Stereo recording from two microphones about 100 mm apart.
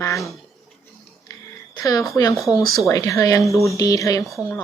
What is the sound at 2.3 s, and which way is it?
Speech, centre (ahead or behind).